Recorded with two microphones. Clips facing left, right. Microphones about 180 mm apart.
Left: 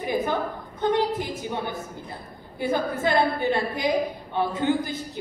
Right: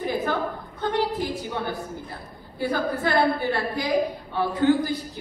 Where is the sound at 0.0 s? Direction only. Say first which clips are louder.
Even; 20° left (ahead or behind).